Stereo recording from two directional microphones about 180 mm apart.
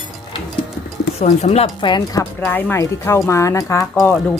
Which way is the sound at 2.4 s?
10° left (ahead or behind).